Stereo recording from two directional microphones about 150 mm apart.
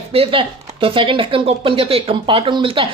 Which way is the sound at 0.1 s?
40° right (ahead or behind).